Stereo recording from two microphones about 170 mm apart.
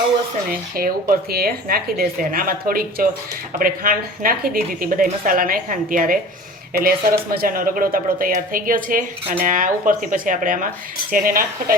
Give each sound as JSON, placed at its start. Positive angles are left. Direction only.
{"t": 0.8, "sound": "speech", "side_deg": -60}